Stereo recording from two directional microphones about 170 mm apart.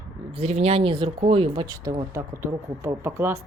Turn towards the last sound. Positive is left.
turn(degrees=-15)  # may be behind; listen again after turning